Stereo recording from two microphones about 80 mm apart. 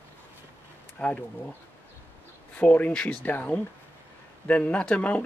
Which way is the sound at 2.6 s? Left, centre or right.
Centre.